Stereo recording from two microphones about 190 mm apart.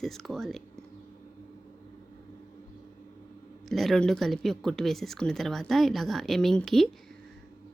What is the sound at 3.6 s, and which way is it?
Speech, centre (ahead or behind).